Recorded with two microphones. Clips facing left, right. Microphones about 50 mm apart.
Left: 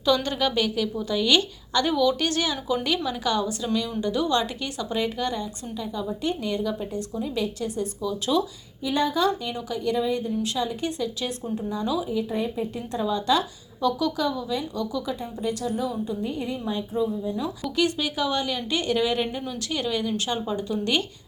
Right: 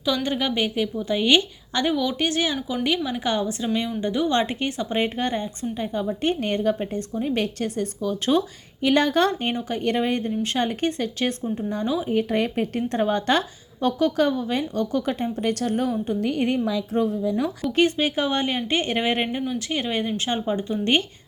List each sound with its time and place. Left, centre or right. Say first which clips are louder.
0.0 s a woman's voice: left 1 dB; centre; by 8.4 s right
8.8 s a woman's voice: right 4 dB; right
9.6 s a woman's voice: right 3 dB; right
9.8 s a woman's voice: right 1 dB; right
12.1 s a woman's voice: right 4 dB; right
17.7 s a woman's voice: right 4 dB; right